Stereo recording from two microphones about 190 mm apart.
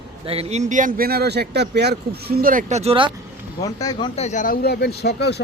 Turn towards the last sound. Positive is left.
turn(degrees=60)  # may be behind; listen again after turning